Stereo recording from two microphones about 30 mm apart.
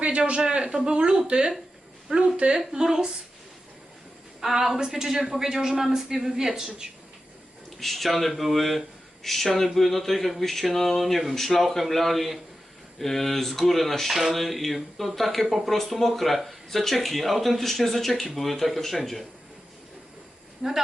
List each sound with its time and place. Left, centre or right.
0.1 s a sound: right
0.5 s speech: right
2.1 s a woman's voice: right
2.7 s speech: right
4.4 s a woman's voice: centre
7.8 s speech: centre
20.6 s speech: centre